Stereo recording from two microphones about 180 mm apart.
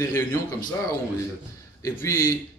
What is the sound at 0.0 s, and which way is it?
Speech, 15° left (ahead or behind).